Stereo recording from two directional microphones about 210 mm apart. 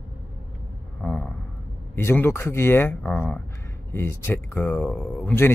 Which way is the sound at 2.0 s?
10° left (ahead or behind).